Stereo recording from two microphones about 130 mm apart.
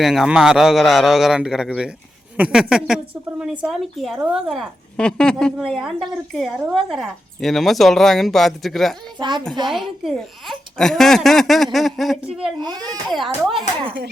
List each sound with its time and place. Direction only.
0.0 s a woman's voice: 5° right (ahead or behind)
9.1 s a child's voice: 35° right (ahead or behind)
9.6 s a woman's voice: centre (ahead or behind)
12.5 s a child's voice: 30° right (ahead or behind)
13.1 s a woman's voice: centre (ahead or behind)